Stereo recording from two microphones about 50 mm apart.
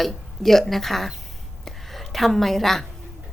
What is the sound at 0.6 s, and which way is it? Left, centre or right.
Speech, centre.